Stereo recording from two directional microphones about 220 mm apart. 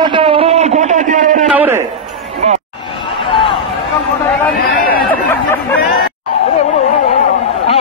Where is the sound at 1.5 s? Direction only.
10° right (ahead or behind).